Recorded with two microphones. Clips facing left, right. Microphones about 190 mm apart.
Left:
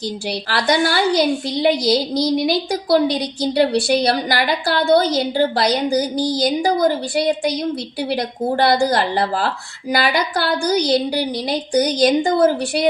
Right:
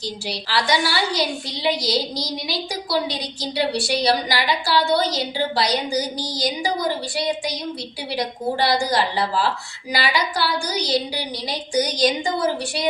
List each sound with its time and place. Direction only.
0.4 s a woman's voice: 55° left (ahead or behind)